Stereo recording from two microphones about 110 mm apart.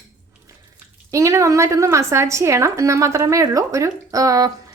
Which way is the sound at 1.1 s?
30° right (ahead or behind).